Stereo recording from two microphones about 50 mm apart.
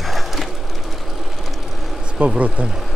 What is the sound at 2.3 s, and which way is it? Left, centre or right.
Speech, right.